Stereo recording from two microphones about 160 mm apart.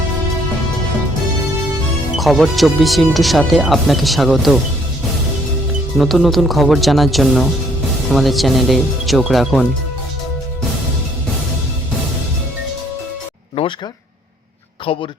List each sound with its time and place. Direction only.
2.1 s speech: centre (ahead or behind)
6.0 s speech: centre (ahead or behind)
14.9 s a man's voice: 35° left (ahead or behind)